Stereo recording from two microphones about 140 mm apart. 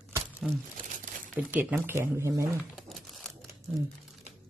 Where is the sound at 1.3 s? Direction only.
10° right (ahead or behind).